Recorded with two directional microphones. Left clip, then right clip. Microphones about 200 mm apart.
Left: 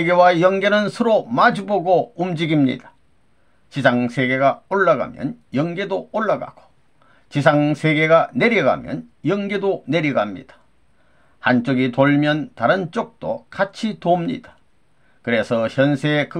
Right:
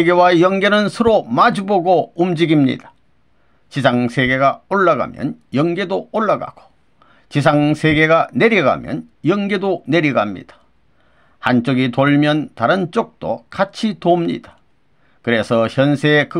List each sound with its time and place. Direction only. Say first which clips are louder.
0.0 s speech: right 2 dB; 35° right (ahead or behind)